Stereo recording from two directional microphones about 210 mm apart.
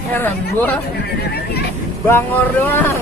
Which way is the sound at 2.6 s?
10° left (ahead or behind).